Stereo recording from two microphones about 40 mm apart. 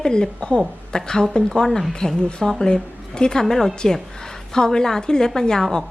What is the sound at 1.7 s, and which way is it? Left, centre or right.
Speech, centre.